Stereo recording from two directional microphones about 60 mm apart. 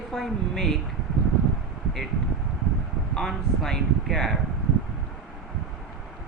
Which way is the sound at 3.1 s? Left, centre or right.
Centre.